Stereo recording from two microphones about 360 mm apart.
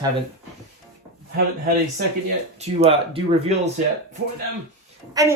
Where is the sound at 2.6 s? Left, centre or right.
Centre.